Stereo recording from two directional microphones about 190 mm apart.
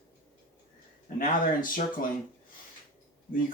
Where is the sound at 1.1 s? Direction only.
45° left (ahead or behind).